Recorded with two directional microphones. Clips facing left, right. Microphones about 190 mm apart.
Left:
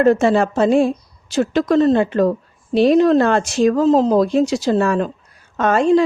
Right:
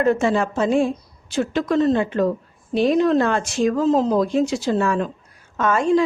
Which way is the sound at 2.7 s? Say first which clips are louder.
Left 4 dB; 80° left.